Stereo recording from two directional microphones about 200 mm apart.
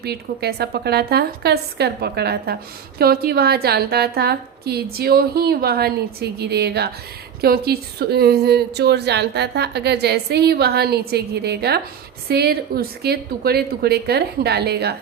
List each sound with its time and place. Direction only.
0.0 s a woman's voice: 50° right (ahead or behind)